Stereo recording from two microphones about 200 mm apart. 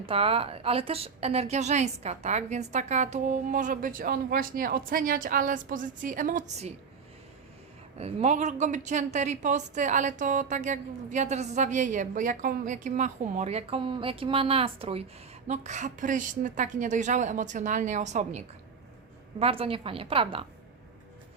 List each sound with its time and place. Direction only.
0.0 s speech: 30° right (ahead or behind)
7.9 s a woman's voice: 30° right (ahead or behind)